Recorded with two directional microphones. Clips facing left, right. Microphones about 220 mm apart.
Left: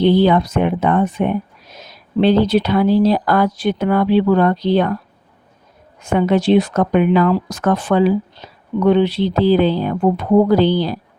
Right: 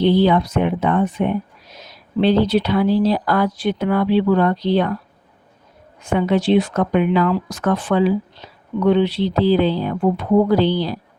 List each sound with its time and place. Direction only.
0.0 s speech: 50° left (ahead or behind)
6.0 s speech: 45° left (ahead or behind)